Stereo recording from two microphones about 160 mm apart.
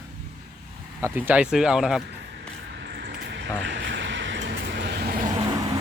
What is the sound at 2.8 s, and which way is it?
Vehicle, 90° right.